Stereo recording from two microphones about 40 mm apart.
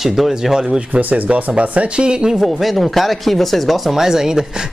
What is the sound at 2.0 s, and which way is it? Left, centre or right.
Speech, right.